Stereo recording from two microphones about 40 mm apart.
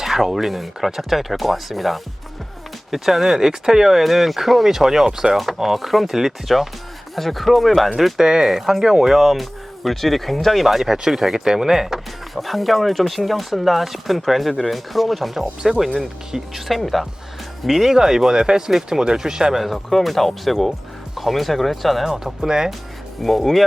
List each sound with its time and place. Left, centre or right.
0.0 s speech: centre
8.2 s speech: centre
19.6 s speech: centre
22.1 s speech: centre
23.2 s speech: centre